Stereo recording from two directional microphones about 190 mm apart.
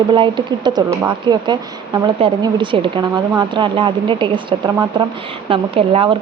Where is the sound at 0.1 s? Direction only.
25° right (ahead or behind).